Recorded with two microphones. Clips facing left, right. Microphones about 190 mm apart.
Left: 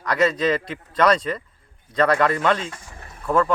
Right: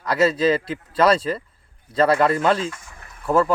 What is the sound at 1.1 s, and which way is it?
Speech, 30° right (ahead or behind).